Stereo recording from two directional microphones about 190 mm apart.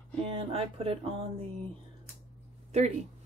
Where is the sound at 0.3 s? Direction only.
30° right (ahead or behind).